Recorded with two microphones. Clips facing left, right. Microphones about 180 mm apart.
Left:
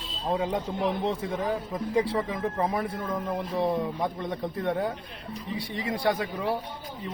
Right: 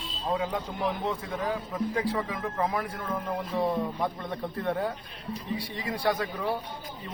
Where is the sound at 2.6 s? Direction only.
25° left (ahead or behind).